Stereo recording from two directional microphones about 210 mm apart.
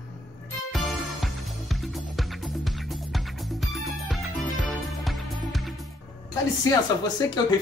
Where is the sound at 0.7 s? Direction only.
Centre (ahead or behind).